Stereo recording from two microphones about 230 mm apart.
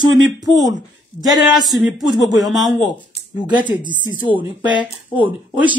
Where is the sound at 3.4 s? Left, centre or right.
Centre.